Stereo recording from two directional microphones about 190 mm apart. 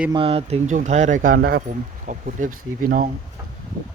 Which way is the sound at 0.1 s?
30° right (ahead or behind).